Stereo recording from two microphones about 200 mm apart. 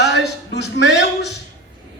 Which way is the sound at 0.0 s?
55° left (ahead or behind).